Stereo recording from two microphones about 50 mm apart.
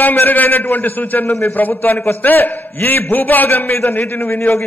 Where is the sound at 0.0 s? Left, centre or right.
Left.